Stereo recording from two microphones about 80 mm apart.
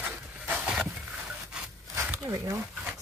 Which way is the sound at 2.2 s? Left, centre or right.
Right.